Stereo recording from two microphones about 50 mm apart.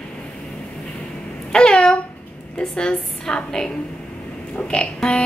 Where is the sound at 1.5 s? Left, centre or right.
Centre.